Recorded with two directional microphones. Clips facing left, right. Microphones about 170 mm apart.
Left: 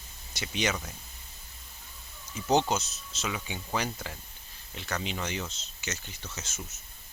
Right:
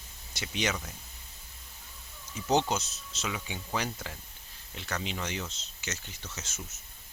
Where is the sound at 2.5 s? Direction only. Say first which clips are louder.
Left 2 dB; 20° left (ahead or behind).